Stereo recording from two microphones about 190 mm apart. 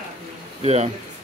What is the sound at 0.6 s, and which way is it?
Speech, 35° right (ahead or behind).